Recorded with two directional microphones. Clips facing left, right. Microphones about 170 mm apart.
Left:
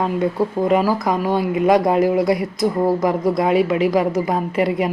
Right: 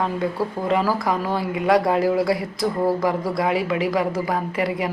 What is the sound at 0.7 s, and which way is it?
Speech, 20° left (ahead or behind).